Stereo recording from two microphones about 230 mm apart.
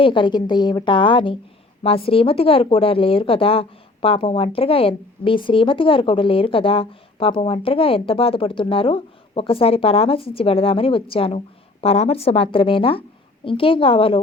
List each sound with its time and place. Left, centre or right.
0.0 s a woman's voice: left